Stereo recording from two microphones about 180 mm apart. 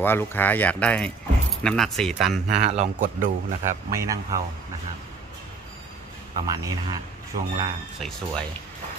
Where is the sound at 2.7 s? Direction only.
45° right (ahead or behind).